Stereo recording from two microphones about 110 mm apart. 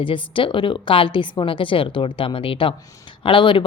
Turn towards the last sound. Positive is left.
turn(degrees=50)  # may be behind; listen again after turning